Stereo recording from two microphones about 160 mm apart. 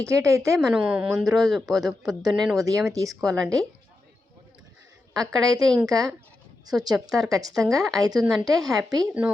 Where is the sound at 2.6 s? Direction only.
20° right (ahead or behind).